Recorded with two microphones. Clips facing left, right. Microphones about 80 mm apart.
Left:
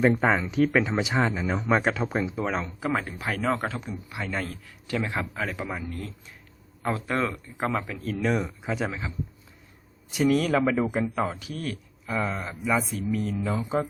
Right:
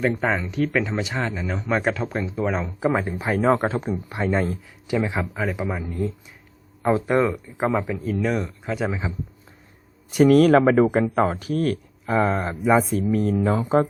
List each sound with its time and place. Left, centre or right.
0.2 s speech: centre
2.8 s speech: right
3.8 s speech: right
4.3 s speech: right
8.0 s speech: centre
8.9 s speech: centre
10.1 s speech: right